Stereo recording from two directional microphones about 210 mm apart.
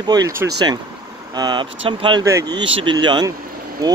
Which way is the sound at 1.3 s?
20° right (ahead or behind).